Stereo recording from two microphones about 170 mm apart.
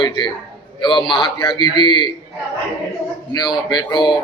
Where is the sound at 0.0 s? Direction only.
25° left (ahead or behind).